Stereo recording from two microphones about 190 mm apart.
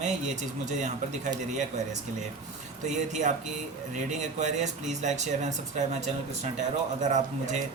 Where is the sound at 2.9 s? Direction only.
40° right (ahead or behind).